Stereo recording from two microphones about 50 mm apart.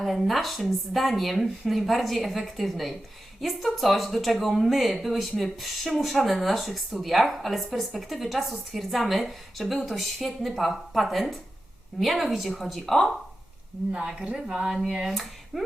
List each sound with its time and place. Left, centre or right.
0.0 s speech: centre
13.9 s speech: centre